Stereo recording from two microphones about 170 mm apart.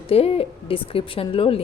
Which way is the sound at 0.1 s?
35° left (ahead or behind).